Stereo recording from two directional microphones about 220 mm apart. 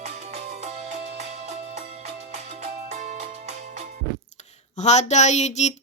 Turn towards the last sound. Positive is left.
turn(degrees=30)  # may be behind; listen again after turning